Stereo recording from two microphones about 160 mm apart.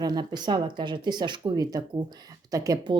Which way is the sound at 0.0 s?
25° right (ahead or behind).